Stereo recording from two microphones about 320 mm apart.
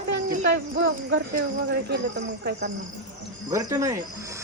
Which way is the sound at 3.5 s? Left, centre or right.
Centre.